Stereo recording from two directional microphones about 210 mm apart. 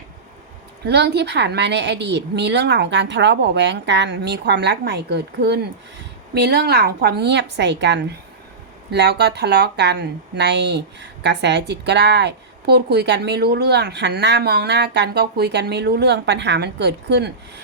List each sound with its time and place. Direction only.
0.9 s a woman's voice: 55° right (ahead or behind)